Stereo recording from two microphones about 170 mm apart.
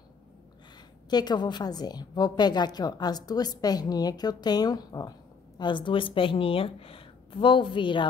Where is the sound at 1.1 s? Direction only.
25° left (ahead or behind).